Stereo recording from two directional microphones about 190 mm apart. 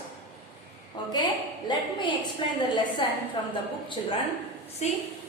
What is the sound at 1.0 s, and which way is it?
A man's voice, 25° left (ahead or behind).